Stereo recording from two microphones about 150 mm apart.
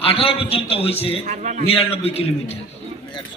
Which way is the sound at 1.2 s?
50° right (ahead or behind).